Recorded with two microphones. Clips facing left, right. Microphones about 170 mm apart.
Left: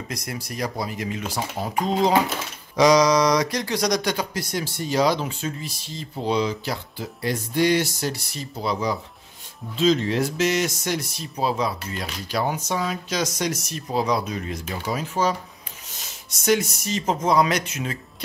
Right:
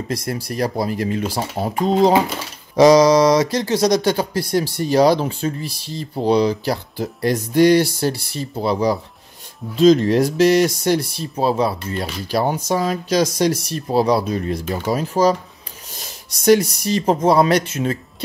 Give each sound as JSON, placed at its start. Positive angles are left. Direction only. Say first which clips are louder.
{"t": 0.1, "sound": "speech", "louder": "right 9 dB", "side_deg": -30}
{"t": 2.7, "sound": "a sound", "louder": "right 6 dB", "side_deg": -30}
{"t": 3.7, "sound": "speech", "louder": "right 7 dB", "side_deg": -25}
{"t": 9.8, "sound": "speech", "louder": "right 8 dB", "side_deg": -45}